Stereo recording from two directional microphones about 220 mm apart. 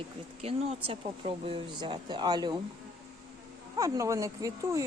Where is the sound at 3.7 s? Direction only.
15° right (ahead or behind).